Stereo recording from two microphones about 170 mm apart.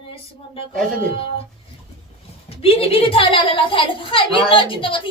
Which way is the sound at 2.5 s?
35° left (ahead or behind).